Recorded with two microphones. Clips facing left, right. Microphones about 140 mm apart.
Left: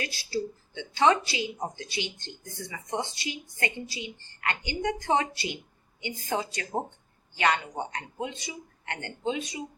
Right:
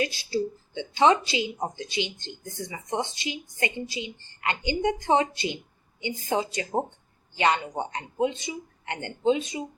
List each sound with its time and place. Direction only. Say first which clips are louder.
0.0 s a woman's voice: right 5 dB; 20° right (ahead or behind)